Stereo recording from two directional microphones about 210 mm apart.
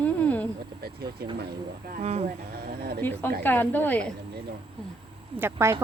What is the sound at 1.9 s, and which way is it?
Speech, 30° right (ahead or behind).